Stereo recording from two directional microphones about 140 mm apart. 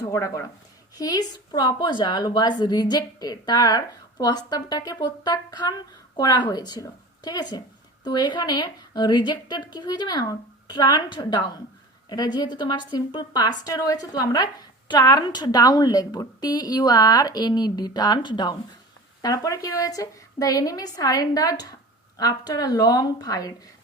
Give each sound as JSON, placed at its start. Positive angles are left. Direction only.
{"t": 0.0, "sound": "a woman's voice", "side_deg": 25}